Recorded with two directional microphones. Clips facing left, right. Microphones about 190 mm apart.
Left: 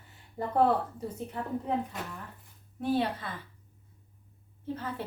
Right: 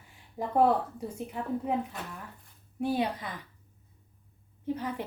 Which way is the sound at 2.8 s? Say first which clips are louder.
Even; 15° right (ahead or behind).